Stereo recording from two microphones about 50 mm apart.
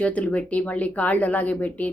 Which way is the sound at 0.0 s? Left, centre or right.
Left.